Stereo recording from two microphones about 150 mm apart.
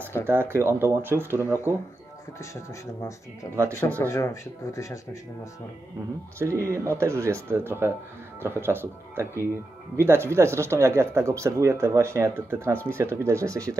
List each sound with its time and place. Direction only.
0.3 s speech: 15° right (ahead or behind)
3.5 s speech: 20° right (ahead or behind)
4.0 s speech: 20° left (ahead or behind)
6.4 s speech: 20° right (ahead or behind)